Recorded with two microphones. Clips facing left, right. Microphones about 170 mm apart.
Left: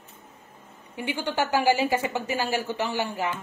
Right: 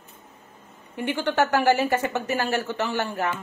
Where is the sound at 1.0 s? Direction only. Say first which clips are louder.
Right 4 dB; 10° left (ahead or behind).